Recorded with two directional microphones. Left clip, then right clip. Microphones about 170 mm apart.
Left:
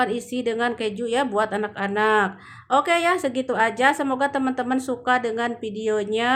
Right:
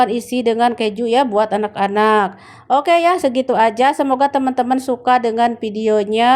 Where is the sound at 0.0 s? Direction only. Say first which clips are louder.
Right 8 dB; 30° right (ahead or behind).